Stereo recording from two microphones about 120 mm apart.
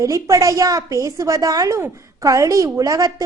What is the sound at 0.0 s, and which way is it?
A woman's voice, 25° right (ahead or behind).